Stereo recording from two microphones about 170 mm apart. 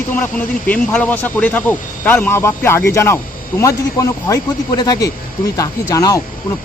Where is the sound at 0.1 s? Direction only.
10° left (ahead or behind).